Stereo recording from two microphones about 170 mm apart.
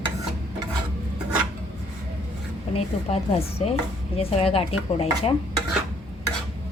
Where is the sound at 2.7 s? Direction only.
35° left (ahead or behind).